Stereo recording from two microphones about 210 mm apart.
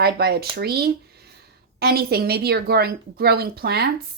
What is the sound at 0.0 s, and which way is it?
A woman's voice, 50° right (ahead or behind).